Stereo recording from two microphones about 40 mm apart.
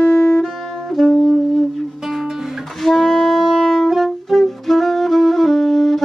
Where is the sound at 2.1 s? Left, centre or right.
Centre.